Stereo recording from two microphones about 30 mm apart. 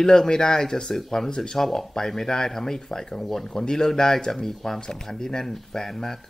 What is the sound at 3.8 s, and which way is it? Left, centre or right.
Speech, centre.